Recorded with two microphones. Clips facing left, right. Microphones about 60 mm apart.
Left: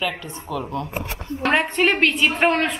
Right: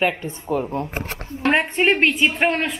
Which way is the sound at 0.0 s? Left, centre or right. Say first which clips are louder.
Right 5 dB; right.